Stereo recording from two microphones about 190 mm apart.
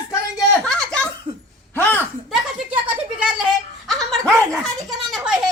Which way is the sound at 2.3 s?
5° right (ahead or behind).